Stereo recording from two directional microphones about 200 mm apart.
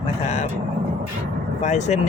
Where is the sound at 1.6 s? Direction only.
35° left (ahead or behind).